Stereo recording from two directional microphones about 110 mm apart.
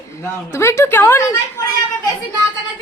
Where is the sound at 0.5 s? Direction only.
25° left (ahead or behind).